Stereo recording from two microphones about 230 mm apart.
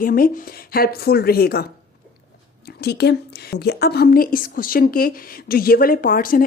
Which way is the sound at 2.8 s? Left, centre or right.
Left.